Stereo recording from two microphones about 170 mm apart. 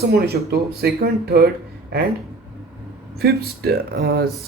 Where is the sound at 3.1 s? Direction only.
70° right (ahead or behind).